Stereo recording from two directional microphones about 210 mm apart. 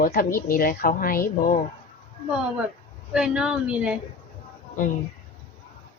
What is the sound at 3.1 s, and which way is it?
Speech, 5° right (ahead or behind).